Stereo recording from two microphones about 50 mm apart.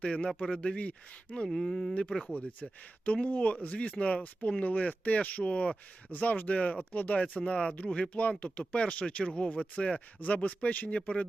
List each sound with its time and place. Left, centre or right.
0.0 s speech: centre
1.5 s speech: centre
2.2 s speech: left